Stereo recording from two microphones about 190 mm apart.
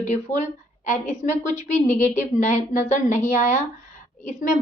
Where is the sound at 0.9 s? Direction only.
40° left (ahead or behind).